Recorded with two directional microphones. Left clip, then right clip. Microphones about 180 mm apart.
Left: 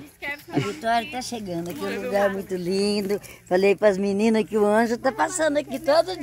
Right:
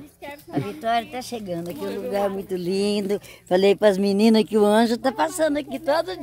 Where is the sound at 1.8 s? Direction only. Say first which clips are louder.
Left 2 dB; 30° right (ahead or behind).